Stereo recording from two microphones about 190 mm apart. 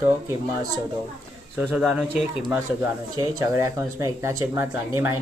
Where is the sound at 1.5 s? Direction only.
5° right (ahead or behind).